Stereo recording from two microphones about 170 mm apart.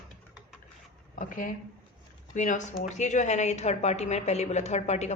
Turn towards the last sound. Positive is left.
turn(degrees=40)  # may be behind; listen again after turning